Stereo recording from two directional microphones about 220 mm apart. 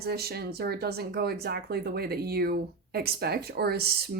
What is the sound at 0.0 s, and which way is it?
Speech, 45° right (ahead or behind).